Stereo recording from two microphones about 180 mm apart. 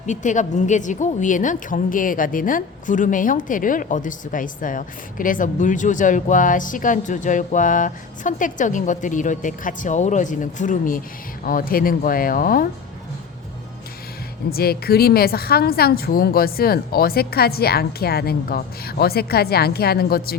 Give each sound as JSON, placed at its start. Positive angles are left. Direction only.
{"t": 0.0, "sound": "a woman's voice", "side_deg": 45}
{"t": 14.5, "sound": "a woman's voice", "side_deg": 60}